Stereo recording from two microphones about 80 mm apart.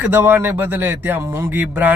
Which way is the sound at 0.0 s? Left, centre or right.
Right.